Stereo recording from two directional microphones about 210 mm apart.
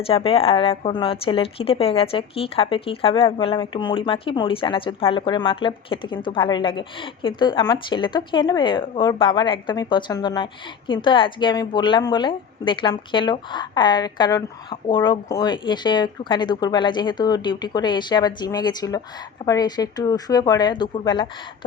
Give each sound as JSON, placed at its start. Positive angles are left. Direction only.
{"t": 0.0, "sound": "a woman's voice", "side_deg": 25}